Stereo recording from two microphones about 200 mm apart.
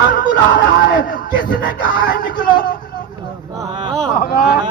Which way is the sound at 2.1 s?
45° left (ahead or behind).